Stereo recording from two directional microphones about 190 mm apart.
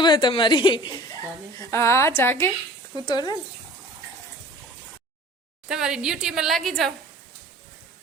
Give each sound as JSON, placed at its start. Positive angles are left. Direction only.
{"t": 0.0, "sound": "a woman's voice", "side_deg": 25}
{"t": 5.6, "sound": "a woman's voice", "side_deg": -5}